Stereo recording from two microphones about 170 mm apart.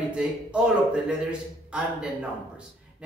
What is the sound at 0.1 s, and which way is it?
A man's voice, 5° right (ahead or behind).